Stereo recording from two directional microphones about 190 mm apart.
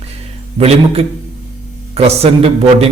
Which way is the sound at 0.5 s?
30° right (ahead or behind).